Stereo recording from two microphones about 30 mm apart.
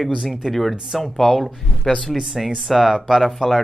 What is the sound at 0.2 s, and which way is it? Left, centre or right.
Speech, centre.